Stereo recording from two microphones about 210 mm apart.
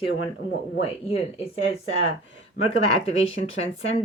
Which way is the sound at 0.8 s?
25° left (ahead or behind).